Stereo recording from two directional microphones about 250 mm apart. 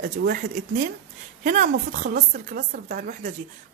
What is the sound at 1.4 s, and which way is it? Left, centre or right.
A woman's voice, right.